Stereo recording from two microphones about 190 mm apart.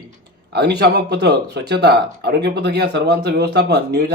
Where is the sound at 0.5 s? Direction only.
60° right (ahead or behind).